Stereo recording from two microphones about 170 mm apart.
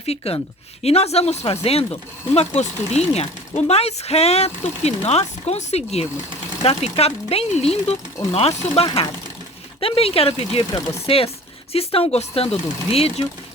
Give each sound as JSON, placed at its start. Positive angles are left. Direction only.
{"t": 0.0, "sound": "speech", "side_deg": 35}